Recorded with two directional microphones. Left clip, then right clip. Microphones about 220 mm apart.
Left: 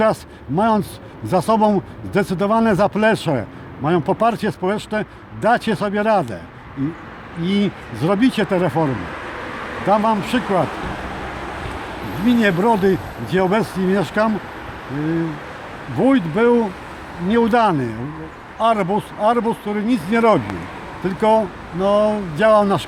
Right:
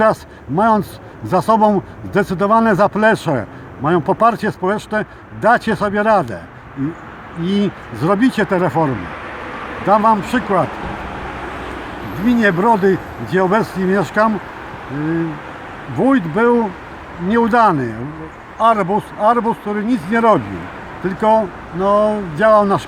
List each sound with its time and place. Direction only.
0.0 s a man's voice: 5° left (ahead or behind)
7.4 s speech: 5° left (ahead or behind)
9.0 s a sound: 45° left (ahead or behind)
9.8 s speech: 5° left (ahead or behind)
12.2 s speech: 5° left (ahead or behind)
16.0 s a man's voice: 5° left (ahead or behind)